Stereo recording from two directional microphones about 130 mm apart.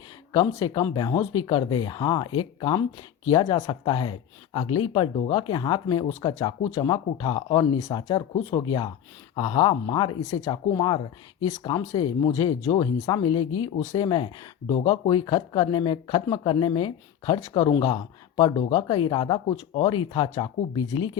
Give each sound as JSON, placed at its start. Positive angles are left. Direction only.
{"t": 0.5, "sound": "speech", "side_deg": 30}